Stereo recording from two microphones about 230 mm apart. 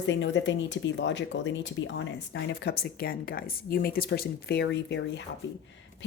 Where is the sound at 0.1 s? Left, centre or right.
Left.